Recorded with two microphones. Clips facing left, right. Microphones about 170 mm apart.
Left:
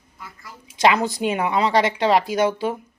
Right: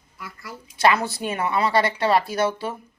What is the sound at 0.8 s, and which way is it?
Speech, 15° left (ahead or behind).